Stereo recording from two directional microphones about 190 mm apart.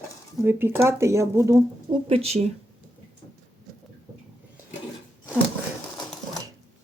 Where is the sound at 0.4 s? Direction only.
10° right (ahead or behind).